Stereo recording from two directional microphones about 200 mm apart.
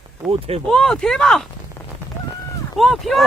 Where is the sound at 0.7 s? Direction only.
5° left (ahead or behind).